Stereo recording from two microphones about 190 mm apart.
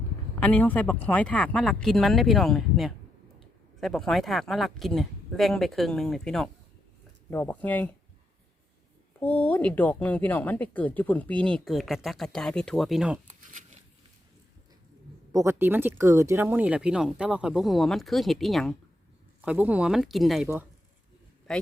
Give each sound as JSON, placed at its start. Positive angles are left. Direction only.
{"t": 0.3, "sound": "speech", "side_deg": 10}
{"t": 9.2, "sound": "speech", "side_deg": 10}
{"t": 13.2, "sound": "a sound", "side_deg": -40}
{"t": 15.3, "sound": "speech", "side_deg": -15}